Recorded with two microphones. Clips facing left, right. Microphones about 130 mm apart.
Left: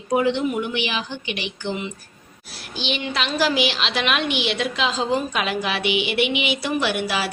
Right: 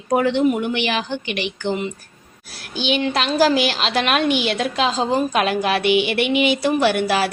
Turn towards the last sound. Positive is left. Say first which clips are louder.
# right 6 dB
turn(degrees=-50)  # may be behind; listen again after turning